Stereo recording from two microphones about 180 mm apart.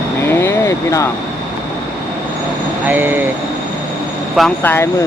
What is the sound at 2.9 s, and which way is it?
Speech, 10° right (ahead or behind).